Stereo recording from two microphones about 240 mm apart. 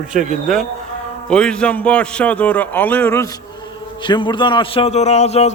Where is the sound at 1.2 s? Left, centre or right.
Centre.